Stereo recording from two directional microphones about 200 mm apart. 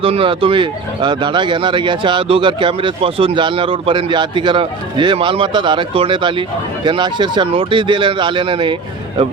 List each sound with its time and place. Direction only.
0.0 s speech: 25° right (ahead or behind)